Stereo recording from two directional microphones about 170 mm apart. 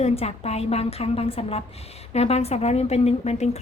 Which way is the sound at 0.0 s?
40° left (ahead or behind).